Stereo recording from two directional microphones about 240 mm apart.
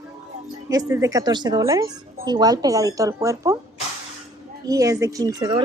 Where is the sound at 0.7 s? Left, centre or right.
Centre.